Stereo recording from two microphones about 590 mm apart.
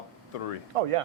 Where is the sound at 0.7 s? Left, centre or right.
Right.